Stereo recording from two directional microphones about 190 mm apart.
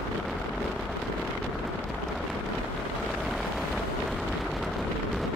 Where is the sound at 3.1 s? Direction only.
Centre (ahead or behind).